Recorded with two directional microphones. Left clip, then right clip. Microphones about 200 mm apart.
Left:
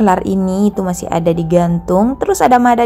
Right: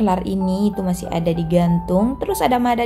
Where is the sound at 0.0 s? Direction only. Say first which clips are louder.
Left 7 dB; 30° left (ahead or behind).